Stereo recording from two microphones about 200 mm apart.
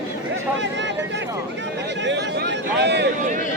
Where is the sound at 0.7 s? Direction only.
60° right (ahead or behind).